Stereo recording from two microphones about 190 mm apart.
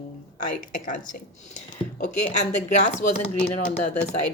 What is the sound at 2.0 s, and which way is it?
Speech, 40° left (ahead or behind).